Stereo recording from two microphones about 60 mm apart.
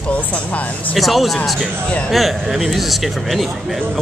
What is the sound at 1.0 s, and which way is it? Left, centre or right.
A man's voice, centre.